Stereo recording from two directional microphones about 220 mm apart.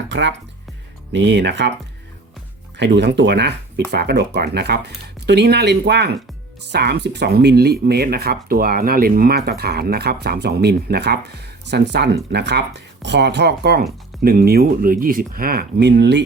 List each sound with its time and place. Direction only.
0.1 s speech: 55° right (ahead or behind)
2.7 s speech: 50° right (ahead or behind)